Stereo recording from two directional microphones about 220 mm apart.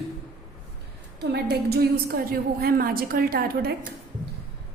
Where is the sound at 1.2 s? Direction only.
45° right (ahead or behind).